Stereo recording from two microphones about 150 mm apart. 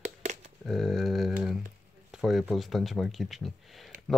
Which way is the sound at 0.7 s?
Centre (ahead or behind).